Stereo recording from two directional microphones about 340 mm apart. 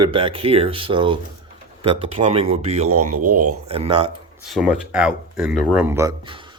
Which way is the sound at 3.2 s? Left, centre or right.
Right.